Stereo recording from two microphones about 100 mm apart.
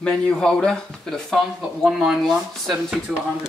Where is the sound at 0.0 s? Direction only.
5° left (ahead or behind).